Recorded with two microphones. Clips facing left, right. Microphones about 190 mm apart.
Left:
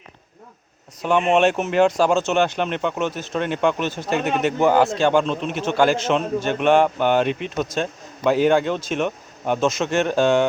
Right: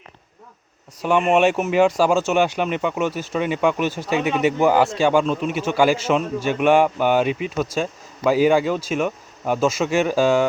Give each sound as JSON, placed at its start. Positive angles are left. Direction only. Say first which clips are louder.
{"t": 1.0, "sound": "speech", "louder": "even", "side_deg": -10}